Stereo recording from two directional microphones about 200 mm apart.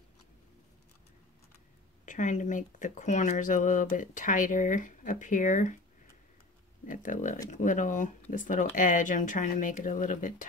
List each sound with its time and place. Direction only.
2.0 s speech: 40° left (ahead or behind)
6.9 s speech: 40° left (ahead or behind)